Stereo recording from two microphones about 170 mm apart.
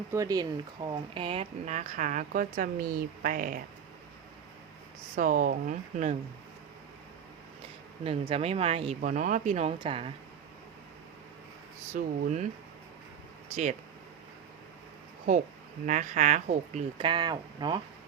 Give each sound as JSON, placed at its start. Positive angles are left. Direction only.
{"t": 0.1, "sound": "speech", "side_deg": -20}
{"t": 5.1, "sound": "speech", "side_deg": -55}
{"t": 8.0, "sound": "speech", "side_deg": -35}
{"t": 9.0, "sound": "speech", "side_deg": -50}
{"t": 11.9, "sound": "speech", "side_deg": -45}
{"t": 15.9, "sound": "speech", "side_deg": -45}
{"t": 17.1, "sound": "speech", "side_deg": -25}